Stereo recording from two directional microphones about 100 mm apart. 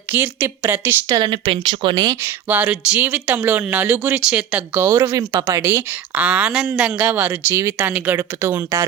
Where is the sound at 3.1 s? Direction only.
20° right (ahead or behind).